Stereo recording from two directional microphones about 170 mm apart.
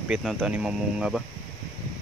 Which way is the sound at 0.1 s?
Centre (ahead or behind).